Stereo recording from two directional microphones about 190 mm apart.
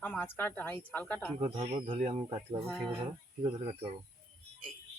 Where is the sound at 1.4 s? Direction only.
35° right (ahead or behind).